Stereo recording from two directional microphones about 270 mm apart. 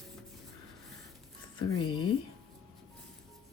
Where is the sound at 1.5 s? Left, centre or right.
Centre.